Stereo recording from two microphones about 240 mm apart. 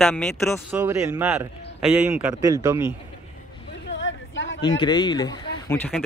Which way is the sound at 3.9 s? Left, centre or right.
Left.